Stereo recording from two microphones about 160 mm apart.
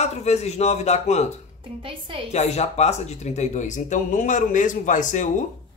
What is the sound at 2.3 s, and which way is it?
Speech, 45° left (ahead or behind).